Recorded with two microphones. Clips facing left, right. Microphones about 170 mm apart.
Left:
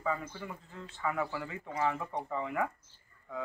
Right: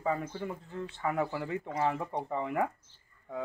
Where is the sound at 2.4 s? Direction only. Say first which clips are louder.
Right 3 dB; 50° right (ahead or behind).